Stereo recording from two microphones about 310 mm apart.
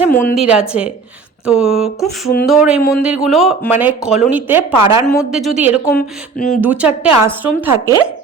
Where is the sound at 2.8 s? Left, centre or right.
Left.